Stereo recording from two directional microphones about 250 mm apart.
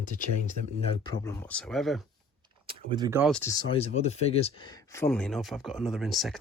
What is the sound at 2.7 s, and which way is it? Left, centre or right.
Speech, centre.